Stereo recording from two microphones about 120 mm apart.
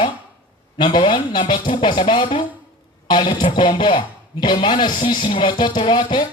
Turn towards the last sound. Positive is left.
turn(degrees=40)  # may be behind; listen again after turning